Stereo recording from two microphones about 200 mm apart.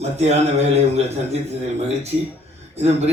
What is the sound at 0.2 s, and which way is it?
Speech, 35° right (ahead or behind).